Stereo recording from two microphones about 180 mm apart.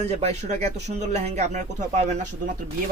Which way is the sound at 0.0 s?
35° right (ahead or behind).